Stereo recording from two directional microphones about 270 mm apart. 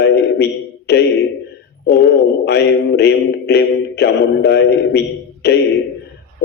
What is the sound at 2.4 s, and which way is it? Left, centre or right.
Mantra, left.